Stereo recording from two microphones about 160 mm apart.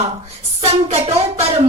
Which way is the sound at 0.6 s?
45° right (ahead or behind).